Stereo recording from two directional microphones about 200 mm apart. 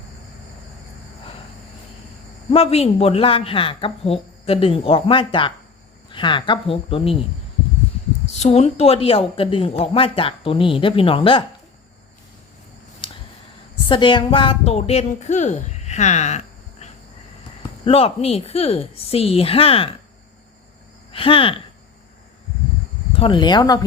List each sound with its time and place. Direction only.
2.5 s speech: 30° left (ahead or behind)
8.4 s speech: 30° left (ahead or behind)
13.0 s a sound: 25° left (ahead or behind)
13.8 s a woman's voice: 25° left (ahead or behind)
21.1 s speech: 25° left (ahead or behind)
23.1 s speech: 25° left (ahead or behind)